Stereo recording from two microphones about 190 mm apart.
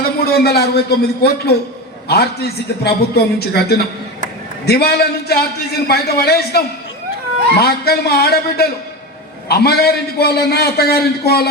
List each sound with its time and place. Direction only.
0.2 s a man's voice: 55° left (ahead or behind)
7.6 s a man's voice: 55° left (ahead or behind)